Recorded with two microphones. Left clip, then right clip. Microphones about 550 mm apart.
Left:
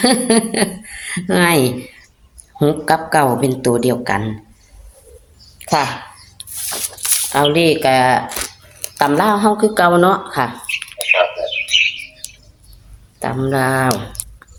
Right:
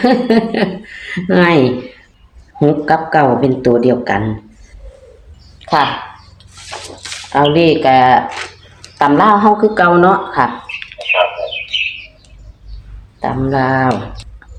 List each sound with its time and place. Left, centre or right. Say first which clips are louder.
0.0 s a woman's voice: right 3 dB; left
7.3 s a woman's voice: right 3 dB; left
10.9 s bird: right 1 dB; left
13.1 s a woman's voice: right 3 dB; left